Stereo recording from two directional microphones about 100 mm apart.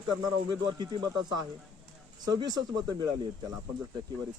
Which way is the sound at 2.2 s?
40° right (ahead or behind).